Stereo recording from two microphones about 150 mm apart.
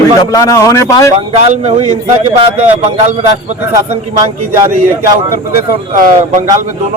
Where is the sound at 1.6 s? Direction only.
45° right (ahead or behind).